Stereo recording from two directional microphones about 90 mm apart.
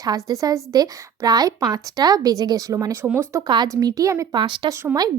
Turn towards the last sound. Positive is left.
turn(degrees=-20)  # may be behind; listen again after turning